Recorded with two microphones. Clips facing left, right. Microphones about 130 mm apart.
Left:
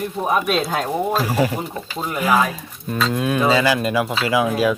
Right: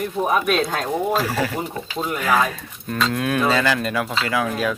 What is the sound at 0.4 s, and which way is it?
Speech, 10° left (ahead or behind).